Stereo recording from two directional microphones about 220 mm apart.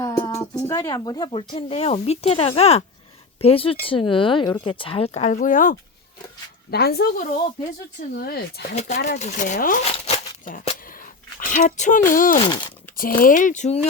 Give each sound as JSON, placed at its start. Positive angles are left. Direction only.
{"t": 0.0, "sound": "a sound", "side_deg": 15}
{"t": 0.7, "sound": "a woman's voice", "side_deg": 15}
{"t": 8.2, "sound": "a woman's voice", "side_deg": 45}
{"t": 8.7, "sound": "speech", "side_deg": 30}